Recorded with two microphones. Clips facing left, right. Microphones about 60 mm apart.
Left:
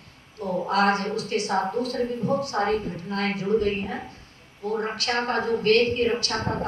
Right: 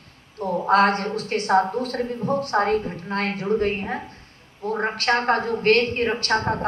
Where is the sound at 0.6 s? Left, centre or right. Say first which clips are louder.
Right 4 dB; right.